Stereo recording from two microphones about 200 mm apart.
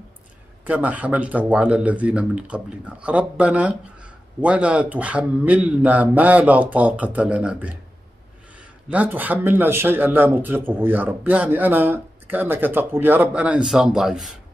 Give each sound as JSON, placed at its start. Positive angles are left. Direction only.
{"t": 0.7, "sound": "speech", "side_deg": -5}